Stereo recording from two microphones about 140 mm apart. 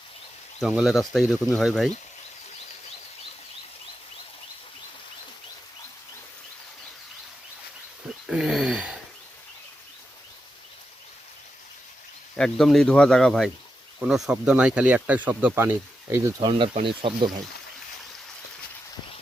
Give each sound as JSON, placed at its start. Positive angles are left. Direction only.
{"t": 0.6, "sound": "speech", "side_deg": -5}
{"t": 8.0, "sound": "a sound", "side_deg": -5}
{"t": 12.4, "sound": "speech", "side_deg": 0}
{"t": 16.4, "sound": "speech", "side_deg": -35}